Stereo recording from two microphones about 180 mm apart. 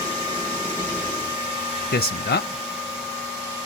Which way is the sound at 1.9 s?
65° left (ahead or behind).